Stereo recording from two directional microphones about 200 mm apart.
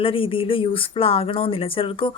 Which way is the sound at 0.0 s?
25° left (ahead or behind).